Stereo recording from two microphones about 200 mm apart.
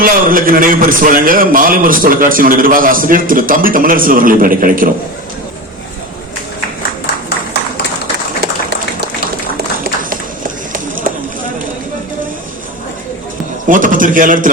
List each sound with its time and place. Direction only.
0.0 s a man's voice: 45° right (ahead or behind)
10.7 s run: 45° right (ahead or behind)
13.7 s a man's voice: 40° right (ahead or behind)